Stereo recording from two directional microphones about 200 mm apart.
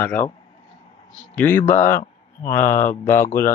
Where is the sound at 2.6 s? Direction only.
40° left (ahead or behind).